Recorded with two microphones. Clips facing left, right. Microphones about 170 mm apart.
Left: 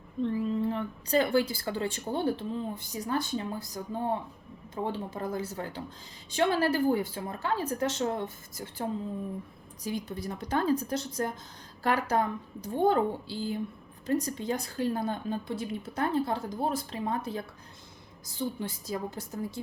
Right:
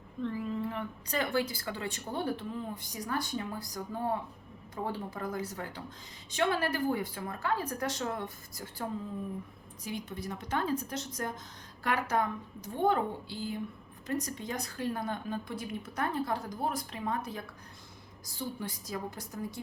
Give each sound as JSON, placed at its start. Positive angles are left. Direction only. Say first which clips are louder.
{"t": 0.2, "sound": "speech", "louder": "left 5 dB", "side_deg": 25}
{"t": 9.8, "sound": "a woman's voice", "louder": "left 4 dB", "side_deg": 35}